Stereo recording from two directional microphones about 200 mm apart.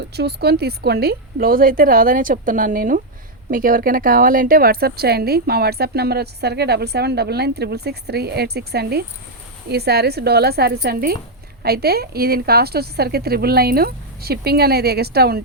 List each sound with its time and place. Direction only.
0.0 s speech: 55° right (ahead or behind)